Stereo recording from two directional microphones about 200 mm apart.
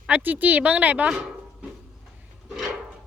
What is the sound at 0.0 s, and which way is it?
Speech, 10° right (ahead or behind).